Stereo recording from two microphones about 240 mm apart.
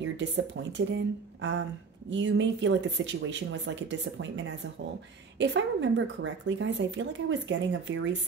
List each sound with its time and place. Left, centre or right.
0.0 s speech: right
5.4 s speech: right